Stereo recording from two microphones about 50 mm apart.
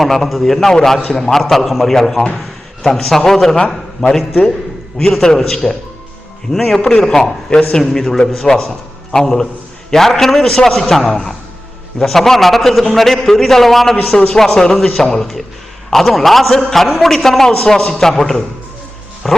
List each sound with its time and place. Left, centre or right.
0.0 s a man's voice: centre
13.9 s a man's voice: left
14.3 s a man's voice: centre